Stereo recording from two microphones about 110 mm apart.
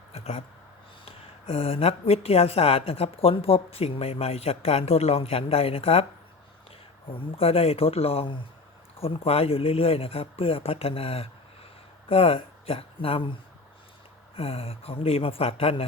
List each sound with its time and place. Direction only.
0.1 s a sound: 70° left (ahead or behind)
1.0 s speech: 60° left (ahead or behind)
7.1 s speech: 60° left (ahead or behind)
14.3 s speech: 60° left (ahead or behind)